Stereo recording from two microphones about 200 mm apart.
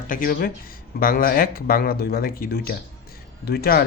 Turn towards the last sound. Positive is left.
turn(degrees=50)  # may be behind; listen again after turning